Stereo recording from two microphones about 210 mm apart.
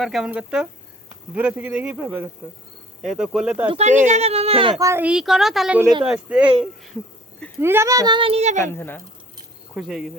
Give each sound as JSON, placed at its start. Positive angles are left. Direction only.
{"t": 0.0, "sound": "a man's voice", "side_deg": 0}
{"t": 3.7, "sound": "speech", "side_deg": -30}
{"t": 4.8, "sound": "speech", "side_deg": -10}
{"t": 8.6, "sound": "speech", "side_deg": 10}
{"t": 9.7, "sound": "speech", "side_deg": 0}